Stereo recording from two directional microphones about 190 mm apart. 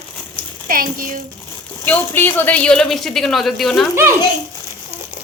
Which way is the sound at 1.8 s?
10° left (ahead or behind).